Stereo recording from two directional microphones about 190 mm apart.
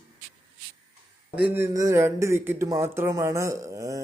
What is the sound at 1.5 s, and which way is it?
A man's voice, 15° right (ahead or behind).